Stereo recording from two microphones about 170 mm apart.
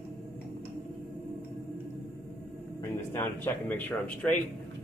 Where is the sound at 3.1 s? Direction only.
10° left (ahead or behind).